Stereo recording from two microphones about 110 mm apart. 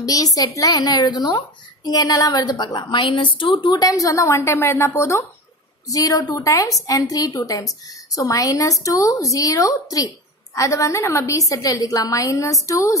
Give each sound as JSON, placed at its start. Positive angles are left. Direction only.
{"t": 0.0, "sound": "a woman's voice", "side_deg": 35}
{"t": 3.8, "sound": "a woman's voice", "side_deg": 30}